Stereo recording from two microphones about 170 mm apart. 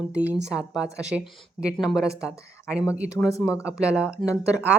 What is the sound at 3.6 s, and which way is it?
Speech, 5° right (ahead or behind).